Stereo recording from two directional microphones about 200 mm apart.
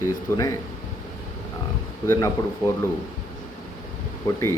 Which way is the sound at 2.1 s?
15° left (ahead or behind).